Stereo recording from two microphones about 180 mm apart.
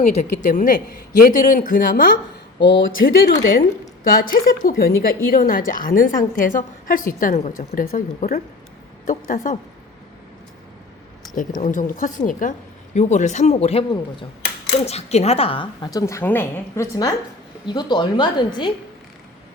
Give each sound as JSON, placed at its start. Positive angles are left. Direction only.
{"t": 0.4, "sound": "a woman's voice", "side_deg": 45}
{"t": 2.6, "sound": "speech", "side_deg": 85}
{"t": 4.2, "sound": "a woman's voice", "side_deg": 50}
{"t": 11.6, "sound": "a woman's voice", "side_deg": 45}